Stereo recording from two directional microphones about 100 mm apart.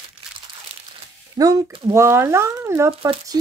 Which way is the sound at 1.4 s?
35° right (ahead or behind).